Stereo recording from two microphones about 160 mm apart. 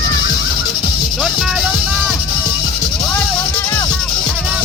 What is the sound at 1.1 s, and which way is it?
Music, centre (ahead or behind).